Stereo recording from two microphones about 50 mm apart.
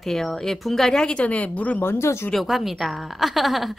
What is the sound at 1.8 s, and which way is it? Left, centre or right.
Speech, left.